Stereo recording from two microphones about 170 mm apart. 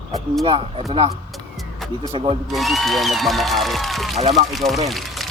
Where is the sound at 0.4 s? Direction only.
30° right (ahead or behind).